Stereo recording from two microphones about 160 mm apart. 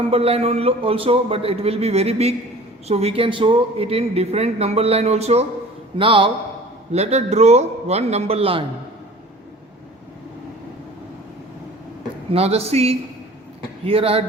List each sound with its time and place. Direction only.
0.1 s a man's voice: 40° right (ahead or behind)
12.3 s a man's voice: 40° right (ahead or behind)